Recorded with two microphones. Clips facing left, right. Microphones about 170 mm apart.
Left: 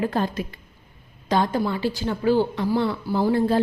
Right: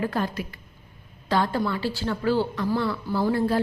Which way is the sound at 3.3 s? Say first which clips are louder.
Left 4 dB; 25° left (ahead or behind).